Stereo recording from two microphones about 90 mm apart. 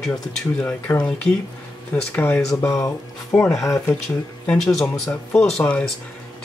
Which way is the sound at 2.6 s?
35° left (ahead or behind).